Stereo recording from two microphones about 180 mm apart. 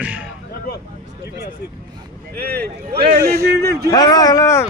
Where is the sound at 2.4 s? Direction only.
60° right (ahead or behind).